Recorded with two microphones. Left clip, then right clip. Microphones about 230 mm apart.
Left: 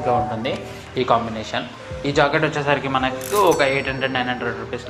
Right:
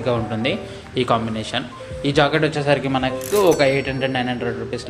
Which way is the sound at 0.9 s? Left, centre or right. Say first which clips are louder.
Left 1 dB; right.